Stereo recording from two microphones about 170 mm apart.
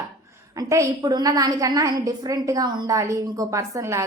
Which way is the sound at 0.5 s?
20° right (ahead or behind).